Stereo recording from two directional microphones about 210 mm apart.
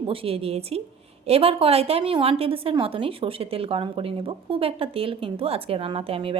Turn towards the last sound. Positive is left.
turn(degrees=-25)  # may be behind; listen again after turning